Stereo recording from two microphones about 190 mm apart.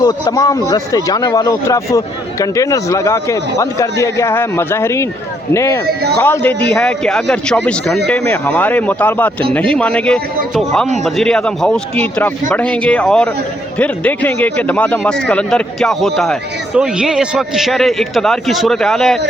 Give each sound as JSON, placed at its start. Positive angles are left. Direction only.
{"t": 0.0, "sound": "speech", "side_deg": 20}